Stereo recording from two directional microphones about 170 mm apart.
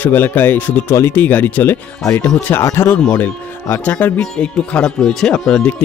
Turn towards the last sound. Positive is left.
turn(degrees=5)  # may be behind; listen again after turning